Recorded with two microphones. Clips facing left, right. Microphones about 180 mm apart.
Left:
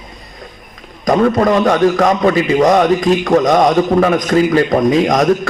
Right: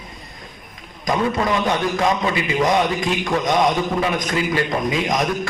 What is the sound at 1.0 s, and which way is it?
A man's voice, 50° left (ahead or behind).